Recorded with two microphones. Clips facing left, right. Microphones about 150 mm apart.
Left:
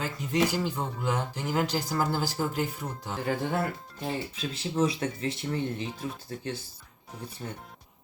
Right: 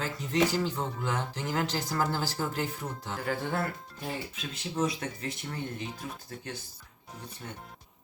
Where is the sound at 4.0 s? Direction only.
30° left (ahead or behind).